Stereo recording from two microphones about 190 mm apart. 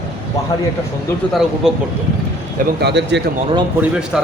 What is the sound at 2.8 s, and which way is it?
Speech, 65° right (ahead or behind).